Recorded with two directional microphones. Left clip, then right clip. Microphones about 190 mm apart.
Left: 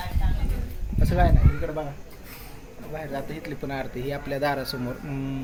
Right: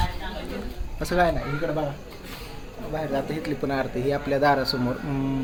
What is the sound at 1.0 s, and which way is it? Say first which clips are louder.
Speech: right 3 dB; 5° left (ahead or behind).